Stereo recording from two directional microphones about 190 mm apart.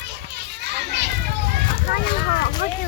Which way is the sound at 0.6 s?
60° right (ahead or behind).